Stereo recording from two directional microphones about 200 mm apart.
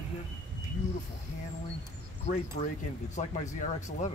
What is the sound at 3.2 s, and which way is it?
Speech, 35° left (ahead or behind).